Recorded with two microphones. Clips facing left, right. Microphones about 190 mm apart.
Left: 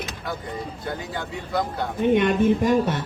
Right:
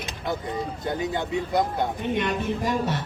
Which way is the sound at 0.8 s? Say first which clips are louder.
Right 6 dB; 20° right (ahead or behind).